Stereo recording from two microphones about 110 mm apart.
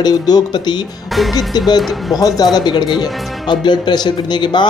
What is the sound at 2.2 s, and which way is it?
Speech, 35° left (ahead or behind).